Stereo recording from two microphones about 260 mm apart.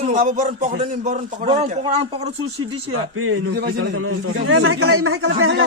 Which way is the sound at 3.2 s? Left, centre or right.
Right.